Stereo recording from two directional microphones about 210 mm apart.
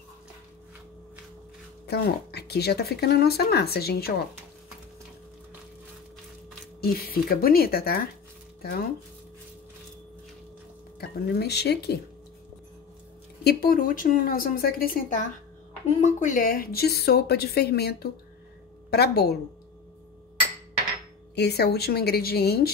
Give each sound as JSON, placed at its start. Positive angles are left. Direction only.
{"t": 1.9, "sound": "speech", "side_deg": 50}
{"t": 6.8, "sound": "speech", "side_deg": 45}
{"t": 11.0, "sound": "speech", "side_deg": 50}
{"t": 13.4, "sound": "speech", "side_deg": 50}
{"t": 21.4, "sound": "speech", "side_deg": 50}